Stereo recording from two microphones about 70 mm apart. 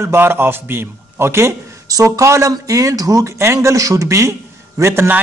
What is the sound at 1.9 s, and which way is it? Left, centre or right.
Speech, right.